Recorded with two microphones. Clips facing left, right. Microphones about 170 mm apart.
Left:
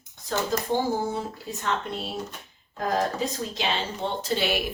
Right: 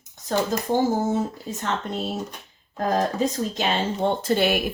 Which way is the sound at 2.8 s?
45° right (ahead or behind).